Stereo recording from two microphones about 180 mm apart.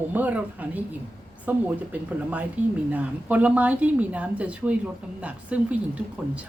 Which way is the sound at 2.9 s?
10° right (ahead or behind).